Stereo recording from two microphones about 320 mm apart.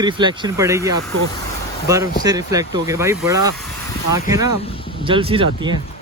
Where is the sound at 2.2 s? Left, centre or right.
Centre.